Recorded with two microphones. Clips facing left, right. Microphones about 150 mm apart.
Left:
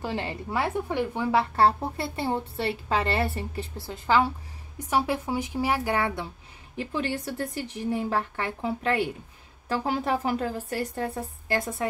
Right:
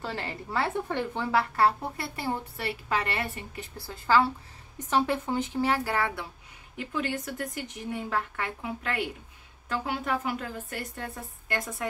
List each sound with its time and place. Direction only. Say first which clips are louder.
0.0 s a woman's voice: left 4 dB; 20° left (ahead or behind)
3.7 s a woman's voice: even; 20° left (ahead or behind)